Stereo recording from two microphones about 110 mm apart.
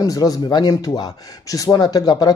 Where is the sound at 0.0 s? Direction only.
35° left (ahead or behind).